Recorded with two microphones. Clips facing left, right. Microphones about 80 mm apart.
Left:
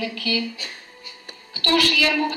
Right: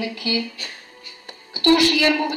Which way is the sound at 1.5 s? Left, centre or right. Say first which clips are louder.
Right 5 dB; right.